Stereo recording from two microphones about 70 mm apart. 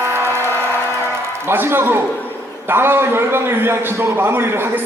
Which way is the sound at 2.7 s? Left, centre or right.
Right.